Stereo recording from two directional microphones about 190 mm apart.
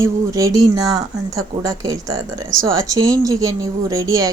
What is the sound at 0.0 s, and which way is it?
Speech, 15° right (ahead or behind).